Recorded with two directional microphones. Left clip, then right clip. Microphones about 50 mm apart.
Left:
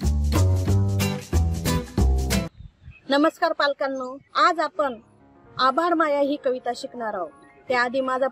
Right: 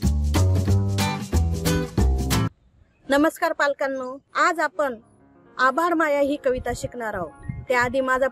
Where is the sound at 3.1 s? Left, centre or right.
Right; by 4.4 s centre.